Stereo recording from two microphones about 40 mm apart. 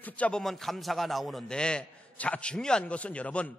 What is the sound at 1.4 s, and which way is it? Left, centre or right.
A man's voice, left.